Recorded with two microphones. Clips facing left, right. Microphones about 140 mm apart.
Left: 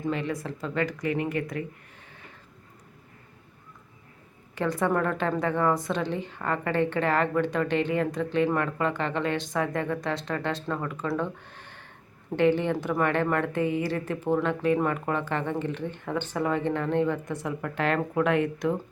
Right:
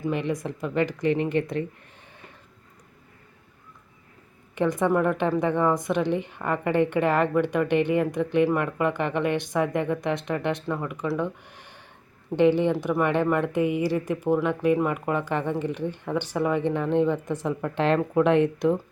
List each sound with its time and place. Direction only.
0.0 s speech: 15° right (ahead or behind)
4.5 s a woman's voice: 20° right (ahead or behind)
11.2 s a sound: 15° right (ahead or behind)
12.4 s a woman's voice: 15° right (ahead or behind)